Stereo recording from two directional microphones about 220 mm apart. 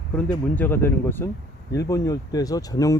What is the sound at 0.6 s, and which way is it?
Speech, 10° left (ahead or behind).